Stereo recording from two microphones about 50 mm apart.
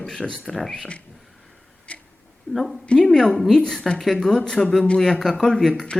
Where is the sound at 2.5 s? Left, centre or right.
Centre.